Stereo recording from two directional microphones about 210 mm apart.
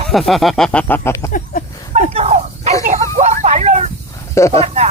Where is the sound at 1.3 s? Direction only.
40° left (ahead or behind).